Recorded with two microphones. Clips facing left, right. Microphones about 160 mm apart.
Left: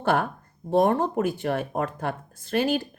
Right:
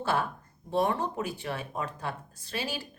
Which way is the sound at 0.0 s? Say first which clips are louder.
Left 6 dB; 55° left (ahead or behind).